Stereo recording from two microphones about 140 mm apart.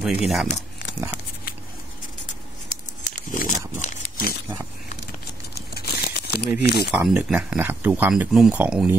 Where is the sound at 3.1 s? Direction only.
70° left (ahead or behind).